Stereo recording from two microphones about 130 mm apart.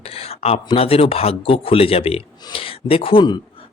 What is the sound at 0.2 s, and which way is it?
Speech, 45° left (ahead or behind).